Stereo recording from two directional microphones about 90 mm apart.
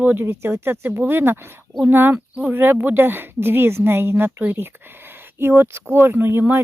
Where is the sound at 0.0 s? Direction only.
20° right (ahead or behind).